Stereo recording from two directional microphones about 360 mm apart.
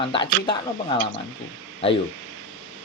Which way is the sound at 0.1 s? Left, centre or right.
Centre.